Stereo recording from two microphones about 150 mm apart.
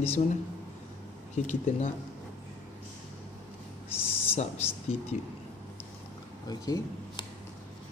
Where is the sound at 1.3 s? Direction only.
50° left (ahead or behind).